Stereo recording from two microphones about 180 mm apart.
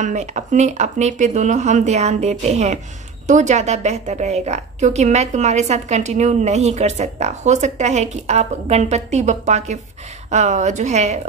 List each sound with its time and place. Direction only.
0.0 s a woman's voice: 40° right (ahead or behind)